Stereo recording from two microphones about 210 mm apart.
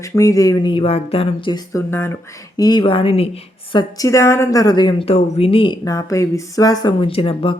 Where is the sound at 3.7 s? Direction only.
15° left (ahead or behind).